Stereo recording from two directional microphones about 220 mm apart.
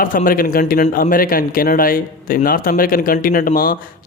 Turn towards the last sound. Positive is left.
turn(degrees=40)  # may be behind; listen again after turning